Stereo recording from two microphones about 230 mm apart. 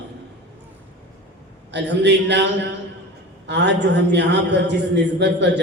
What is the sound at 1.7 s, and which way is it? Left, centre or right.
A woman's voice, right.